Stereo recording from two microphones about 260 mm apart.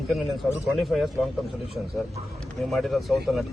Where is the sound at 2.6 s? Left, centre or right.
Centre.